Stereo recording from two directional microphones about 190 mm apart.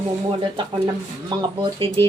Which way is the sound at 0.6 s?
25° right (ahead or behind).